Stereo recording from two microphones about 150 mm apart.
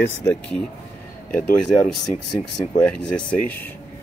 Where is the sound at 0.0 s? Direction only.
15° left (ahead or behind).